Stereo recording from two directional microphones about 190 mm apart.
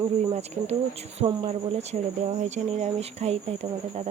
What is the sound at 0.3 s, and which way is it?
Speech, 35° right (ahead or behind).